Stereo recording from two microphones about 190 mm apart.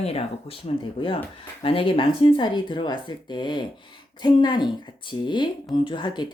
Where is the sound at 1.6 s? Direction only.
30° left (ahead or behind).